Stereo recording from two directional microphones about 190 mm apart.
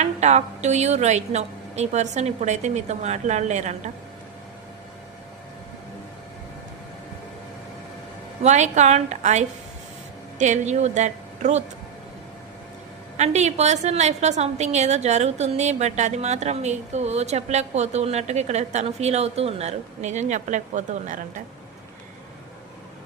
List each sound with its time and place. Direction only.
0.0 s a woman's voice: 35° right (ahead or behind)
8.4 s a woman's voice: 40° right (ahead or behind)
13.1 s a woman's voice: 35° right (ahead or behind)